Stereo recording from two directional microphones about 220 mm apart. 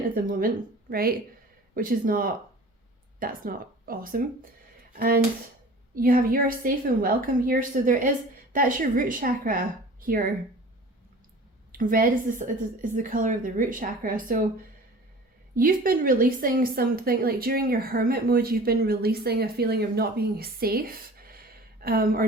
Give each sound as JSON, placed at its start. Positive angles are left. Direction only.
{"t": 0.1, "sound": "a woman's voice", "side_deg": -40}
{"t": 11.7, "sound": "a woman's voice", "side_deg": -40}
{"t": 15.5, "sound": "a woman's voice", "side_deg": -40}